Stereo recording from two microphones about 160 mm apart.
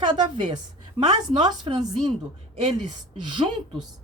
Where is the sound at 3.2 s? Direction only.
30° right (ahead or behind).